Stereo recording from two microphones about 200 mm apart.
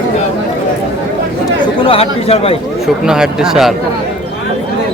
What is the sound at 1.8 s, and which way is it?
Speech, 30° left (ahead or behind).